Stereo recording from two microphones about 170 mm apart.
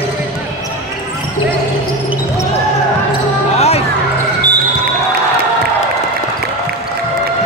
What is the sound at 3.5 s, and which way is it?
Music, 40° left (ahead or behind).